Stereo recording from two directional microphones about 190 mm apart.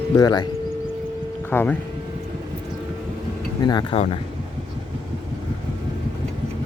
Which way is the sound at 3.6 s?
20° left (ahead or behind).